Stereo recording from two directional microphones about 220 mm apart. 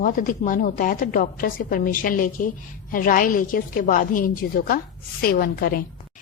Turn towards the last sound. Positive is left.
turn(degrees=40)  # may be behind; listen again after turning